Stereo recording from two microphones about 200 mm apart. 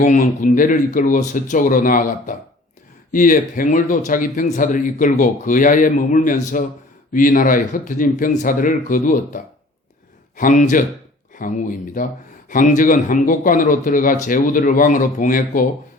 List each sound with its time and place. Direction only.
0.0 s speech: 40° left (ahead or behind)